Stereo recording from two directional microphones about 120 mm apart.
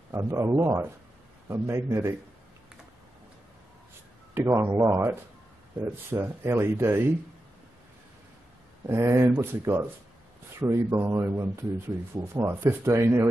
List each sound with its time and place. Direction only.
0.1 s speech: 25° right (ahead or behind)
4.3 s speech: 20° right (ahead or behind)
8.8 s speech: 20° right (ahead or behind)